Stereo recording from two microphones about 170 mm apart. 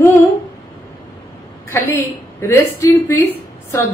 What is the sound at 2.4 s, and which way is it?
A woman's voice, 15° left (ahead or behind).